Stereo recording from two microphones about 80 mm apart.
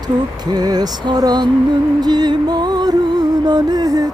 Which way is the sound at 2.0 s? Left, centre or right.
Right.